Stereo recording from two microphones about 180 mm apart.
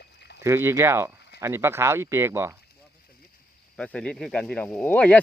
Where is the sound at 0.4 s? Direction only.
15° right (ahead or behind).